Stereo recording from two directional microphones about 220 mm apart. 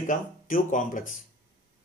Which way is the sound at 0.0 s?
40° left (ahead or behind).